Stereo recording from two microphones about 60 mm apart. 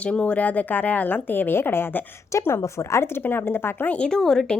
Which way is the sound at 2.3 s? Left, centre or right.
Left.